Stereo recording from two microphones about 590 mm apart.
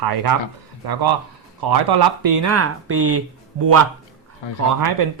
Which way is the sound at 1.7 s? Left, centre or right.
Right.